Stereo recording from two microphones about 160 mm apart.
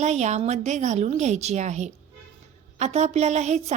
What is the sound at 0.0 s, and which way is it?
A woman's voice, 45° right (ahead or behind).